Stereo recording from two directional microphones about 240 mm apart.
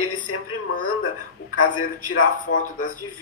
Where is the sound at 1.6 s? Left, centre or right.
Left.